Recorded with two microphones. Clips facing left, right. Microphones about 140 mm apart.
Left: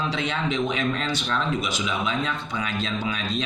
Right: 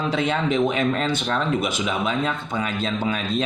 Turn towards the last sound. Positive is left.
turn(degrees=-45)  # may be behind; listen again after turning